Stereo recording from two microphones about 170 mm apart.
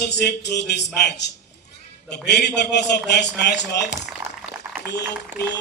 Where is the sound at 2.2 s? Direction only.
80° left.